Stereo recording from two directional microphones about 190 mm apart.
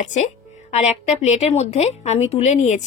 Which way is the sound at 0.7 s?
35° left (ahead or behind).